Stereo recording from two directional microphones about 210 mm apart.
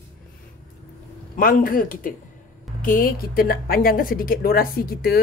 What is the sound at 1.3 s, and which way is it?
A woman's voice, 40° left (ahead or behind).